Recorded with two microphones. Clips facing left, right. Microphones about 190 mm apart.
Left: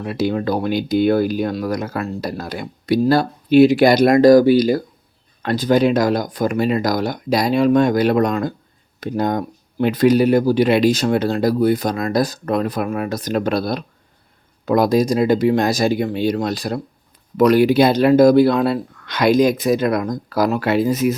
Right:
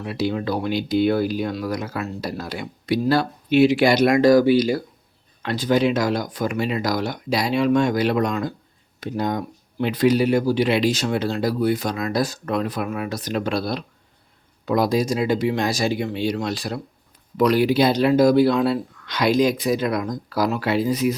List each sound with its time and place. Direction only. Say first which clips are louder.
0.0 s speech: left 4 dB; 50° left (ahead or behind)